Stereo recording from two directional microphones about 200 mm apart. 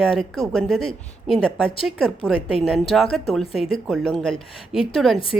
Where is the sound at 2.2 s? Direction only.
25° left (ahead or behind).